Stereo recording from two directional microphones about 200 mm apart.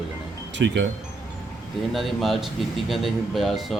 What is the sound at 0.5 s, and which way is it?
Speech, 65° right (ahead or behind).